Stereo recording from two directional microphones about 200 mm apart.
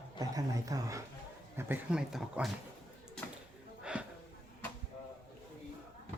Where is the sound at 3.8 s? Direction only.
5° right (ahead or behind).